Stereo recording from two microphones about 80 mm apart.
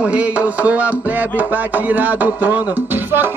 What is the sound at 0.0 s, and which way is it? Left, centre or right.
Music, centre.